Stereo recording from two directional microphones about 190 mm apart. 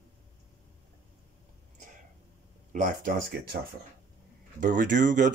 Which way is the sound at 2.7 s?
45° right (ahead or behind).